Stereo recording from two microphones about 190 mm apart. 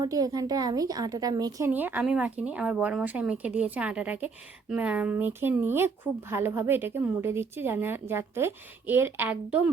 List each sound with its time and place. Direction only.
0.0 s speech: 20° right (ahead or behind)